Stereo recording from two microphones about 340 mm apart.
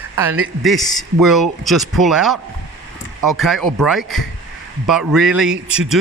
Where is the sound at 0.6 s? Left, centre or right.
Centre.